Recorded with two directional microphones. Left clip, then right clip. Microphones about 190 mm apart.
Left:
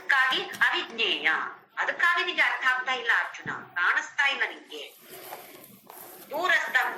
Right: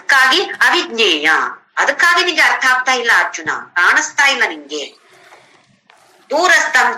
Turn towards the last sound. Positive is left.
turn(degrees=-55)  # may be behind; listen again after turning